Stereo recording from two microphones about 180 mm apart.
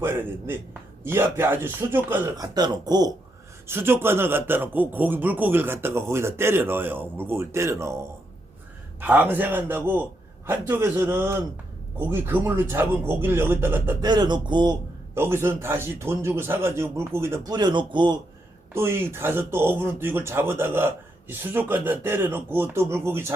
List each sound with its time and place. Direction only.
0.0 s speech: 10° right (ahead or behind)
2.4 s speech: 20° right (ahead or behind)
9.0 s speech: 10° right (ahead or behind)
14.0 s speech: 25° right (ahead or behind)
15.1 s speech: 15° right (ahead or behind)
18.7 s speech: 15° right (ahead or behind)